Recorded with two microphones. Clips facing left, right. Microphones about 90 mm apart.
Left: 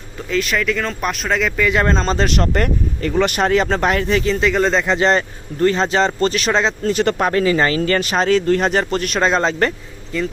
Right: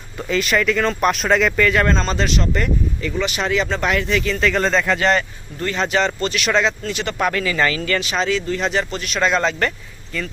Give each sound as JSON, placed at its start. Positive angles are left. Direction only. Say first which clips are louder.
{"t": 0.2, "sound": "speech", "louder": "right 1 dB", "side_deg": 0}
{"t": 1.7, "sound": "speech", "louder": "left 1 dB", "side_deg": 25}
{"t": 2.2, "sound": "speech", "louder": "left 3 dB", "side_deg": 55}
{"t": 4.4, "sound": "speech", "louder": "left 2 dB", "side_deg": 15}
{"t": 7.3, "sound": "speech", "louder": "left 4 dB", "side_deg": 30}
{"t": 9.2, "sound": "speech", "louder": "left 1 dB", "side_deg": 30}